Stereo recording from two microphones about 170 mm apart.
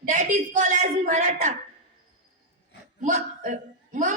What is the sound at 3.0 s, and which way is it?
Speech, 50° right (ahead or behind).